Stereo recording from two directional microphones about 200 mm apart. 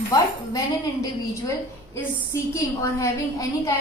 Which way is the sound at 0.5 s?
15° left (ahead or behind).